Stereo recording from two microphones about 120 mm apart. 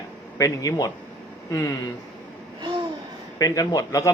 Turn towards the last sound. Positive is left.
turn(degrees=25)  # may be behind; listen again after turning